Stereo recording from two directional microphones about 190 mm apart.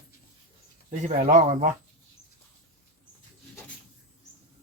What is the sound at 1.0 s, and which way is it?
Speech, 40° right (ahead or behind).